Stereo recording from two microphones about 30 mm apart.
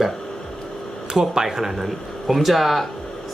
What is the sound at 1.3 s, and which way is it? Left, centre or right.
Speech, centre.